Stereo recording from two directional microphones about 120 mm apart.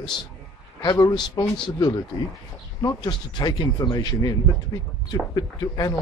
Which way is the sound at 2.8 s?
35° left (ahead or behind).